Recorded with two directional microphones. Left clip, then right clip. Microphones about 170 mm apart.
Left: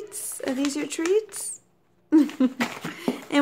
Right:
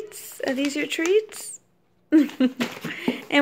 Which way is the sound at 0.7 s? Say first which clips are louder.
Right 3 dB; 5° right (ahead or behind).